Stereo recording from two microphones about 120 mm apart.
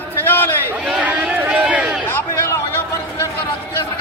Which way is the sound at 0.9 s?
10° right (ahead or behind).